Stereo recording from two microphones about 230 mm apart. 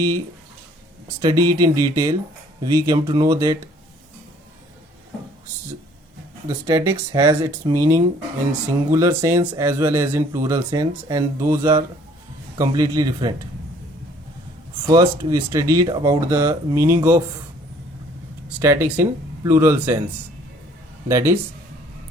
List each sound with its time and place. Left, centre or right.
1.2 s speech: centre
6.5 s speech: centre
14.8 s speech: centre
18.6 s speech: centre
21.1 s speech: centre